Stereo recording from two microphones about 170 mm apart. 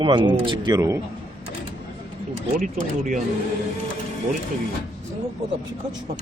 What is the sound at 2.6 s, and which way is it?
Speech, 50° right (ahead or behind).